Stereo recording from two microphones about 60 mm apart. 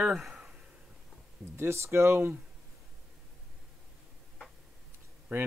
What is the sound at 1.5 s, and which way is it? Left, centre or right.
Speech, right.